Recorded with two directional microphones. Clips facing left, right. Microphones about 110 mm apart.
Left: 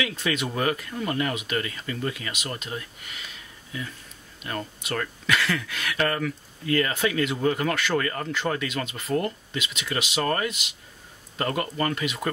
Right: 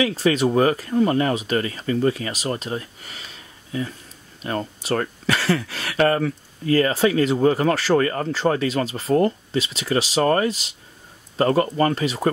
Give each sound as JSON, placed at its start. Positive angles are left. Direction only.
{"t": 0.0, "sound": "speech", "side_deg": -35}